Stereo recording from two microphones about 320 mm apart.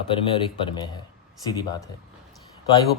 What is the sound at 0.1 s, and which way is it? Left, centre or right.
Speech, centre.